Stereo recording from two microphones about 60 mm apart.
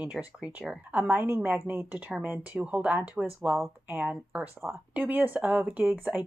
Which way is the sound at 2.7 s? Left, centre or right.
Right.